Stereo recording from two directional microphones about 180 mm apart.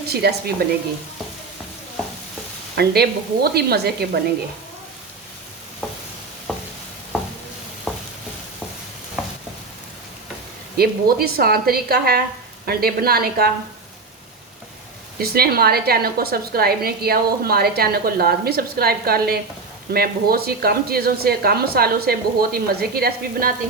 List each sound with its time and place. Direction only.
0.1 s a woman's voice: 65° right (ahead or behind)
2.7 s a woman's voice: 60° right (ahead or behind)
10.8 s a woman's voice: 60° right (ahead or behind)
15.2 s a woman's voice: 60° right (ahead or behind)